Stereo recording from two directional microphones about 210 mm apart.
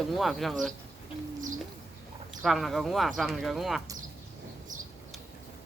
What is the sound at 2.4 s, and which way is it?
Speech, centre (ahead or behind).